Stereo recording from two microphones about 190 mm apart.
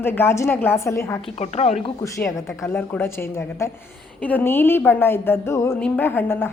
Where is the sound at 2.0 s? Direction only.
10° left (ahead or behind).